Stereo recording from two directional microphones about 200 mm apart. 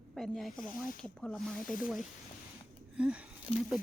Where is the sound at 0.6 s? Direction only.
45° left (ahead or behind).